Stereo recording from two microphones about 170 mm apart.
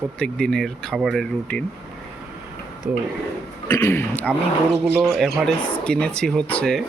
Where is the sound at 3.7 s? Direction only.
15° left (ahead or behind).